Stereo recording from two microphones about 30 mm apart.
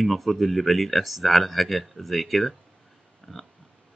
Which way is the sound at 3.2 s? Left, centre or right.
Left.